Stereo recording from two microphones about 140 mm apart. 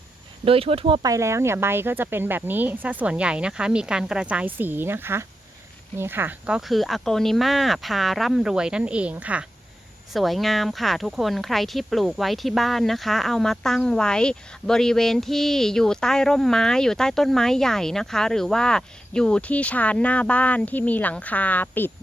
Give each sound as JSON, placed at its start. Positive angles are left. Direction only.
{"t": 0.4, "sound": "speech", "side_deg": -40}
{"t": 1.0, "sound": "speech", "side_deg": -20}